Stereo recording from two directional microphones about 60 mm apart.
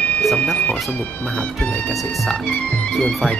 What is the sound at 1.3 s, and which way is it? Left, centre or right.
Speech, centre.